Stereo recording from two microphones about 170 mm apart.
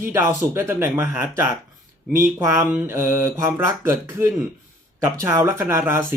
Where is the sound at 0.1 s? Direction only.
15° right (ahead or behind).